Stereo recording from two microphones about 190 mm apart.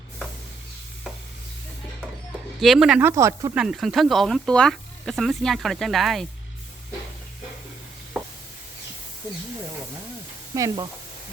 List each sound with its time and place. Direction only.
2.6 s speech: centre (ahead or behind)
3.6 s speech: centre (ahead or behind)
8.1 s a sound: centre (ahead or behind)
10.5 s speech: 15° right (ahead or behind)